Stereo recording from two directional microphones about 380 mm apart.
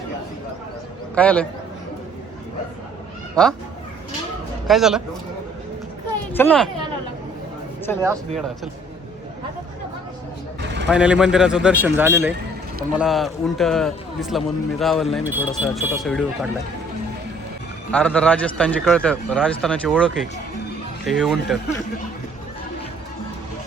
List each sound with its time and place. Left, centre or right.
1.1 s a man's voice: centre
3.4 s a man's voice: centre
4.7 s a man's voice: centre
6.3 s a man's voice: centre
7.9 s a man's voice: centre
10.6 s a sound: right
10.8 s a man's voice: centre
17.9 s a man's voice: centre